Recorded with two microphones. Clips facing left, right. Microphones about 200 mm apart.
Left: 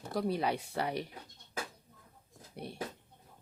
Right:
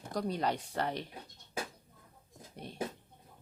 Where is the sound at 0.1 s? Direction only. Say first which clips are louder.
Left 1 dB; 5° left (ahead or behind).